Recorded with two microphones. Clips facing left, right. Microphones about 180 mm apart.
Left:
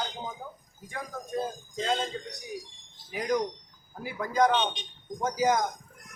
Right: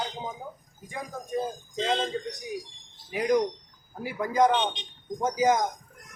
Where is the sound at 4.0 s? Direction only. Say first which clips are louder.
Right 2 dB; 15° right (ahead or behind).